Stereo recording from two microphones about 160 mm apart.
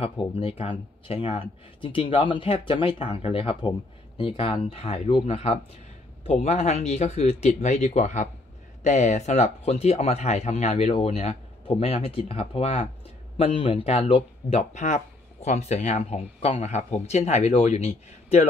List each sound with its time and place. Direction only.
0.0 s speech: 35° left (ahead or behind)